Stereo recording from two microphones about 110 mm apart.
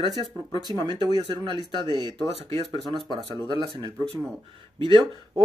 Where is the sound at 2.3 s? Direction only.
60° right (ahead or behind).